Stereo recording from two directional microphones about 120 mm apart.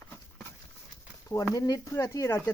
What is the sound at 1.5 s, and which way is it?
Speech, 30° left (ahead or behind).